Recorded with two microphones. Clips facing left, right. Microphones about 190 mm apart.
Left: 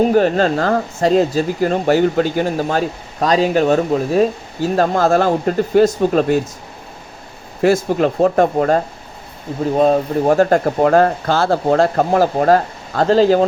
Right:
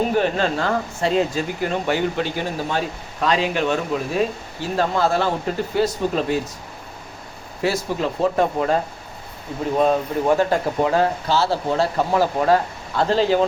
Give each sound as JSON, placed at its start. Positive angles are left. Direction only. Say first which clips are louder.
{"t": 0.1, "sound": "speech", "louder": "left 6 dB", "side_deg": 40}
{"t": 7.6, "sound": "speech", "louder": "left 8 dB", "side_deg": 55}